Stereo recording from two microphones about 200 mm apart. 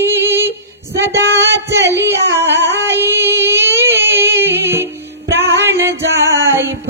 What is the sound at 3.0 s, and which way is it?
Female singing, 10° right (ahead or behind).